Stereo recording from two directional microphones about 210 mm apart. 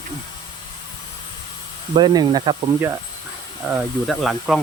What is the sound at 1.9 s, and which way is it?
Speech, 20° right (ahead or behind).